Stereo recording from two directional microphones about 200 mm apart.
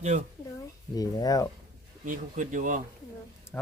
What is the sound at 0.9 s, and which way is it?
Speech, 20° left (ahead or behind).